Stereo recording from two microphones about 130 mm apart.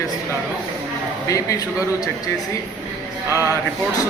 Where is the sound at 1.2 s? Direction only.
25° left (ahead or behind).